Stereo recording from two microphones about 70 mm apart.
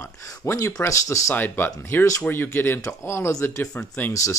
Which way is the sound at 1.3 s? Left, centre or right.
Left.